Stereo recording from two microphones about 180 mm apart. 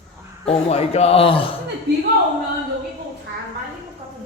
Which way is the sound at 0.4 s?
35° left (ahead or behind).